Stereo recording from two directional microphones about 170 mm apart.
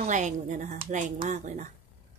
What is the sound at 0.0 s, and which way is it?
A woman's voice, 45° right (ahead or behind).